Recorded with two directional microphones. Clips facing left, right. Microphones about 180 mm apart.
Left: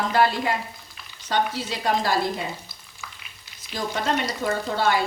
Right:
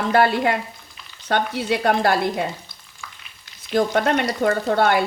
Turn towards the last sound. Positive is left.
turn(degrees=-60)  # may be behind; listen again after turning